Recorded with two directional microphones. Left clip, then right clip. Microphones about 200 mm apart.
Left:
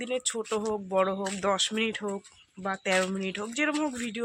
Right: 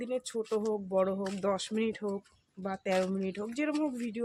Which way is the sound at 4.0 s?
Centre (ahead or behind).